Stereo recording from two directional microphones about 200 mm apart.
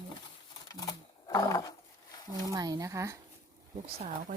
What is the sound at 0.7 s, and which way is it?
Speech, 20° left (ahead or behind).